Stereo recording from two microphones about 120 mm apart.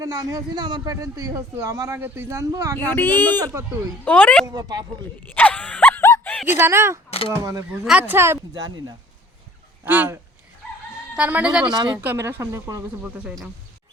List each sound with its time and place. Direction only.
0.0 s a man's voice: 30° right (ahead or behind)
2.7 s speech: 15° left (ahead or behind)
4.4 s a man's voice: 35° right (ahead or behind)
5.3 s a sound: 15° left (ahead or behind)
6.6 s speech: 20° right (ahead or behind)
7.1 s speech: 50° left (ahead or behind)
7.9 s speech: 10° right (ahead or behind)
8.5 s a man's voice: 35° right (ahead or behind)
9.8 s speech: 15° right (ahead or behind)
12.1 s speech: 25° right (ahead or behind)
13.0 s speech: 10° right (ahead or behind)